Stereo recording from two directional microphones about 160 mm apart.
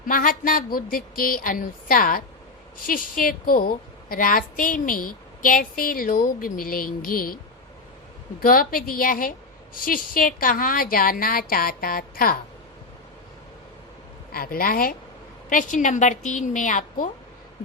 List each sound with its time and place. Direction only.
0.0 s a woman's voice: 60° left (ahead or behind)
8.4 s a woman's voice: 65° left (ahead or behind)
14.3 s a woman's voice: 65° left (ahead or behind)
15.4 s a woman's voice: 55° left (ahead or behind)